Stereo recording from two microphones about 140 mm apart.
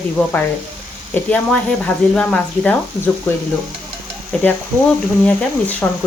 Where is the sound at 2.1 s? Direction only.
10° left (ahead or behind).